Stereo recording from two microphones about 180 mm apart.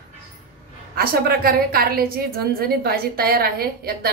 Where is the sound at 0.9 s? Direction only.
55° right (ahead or behind).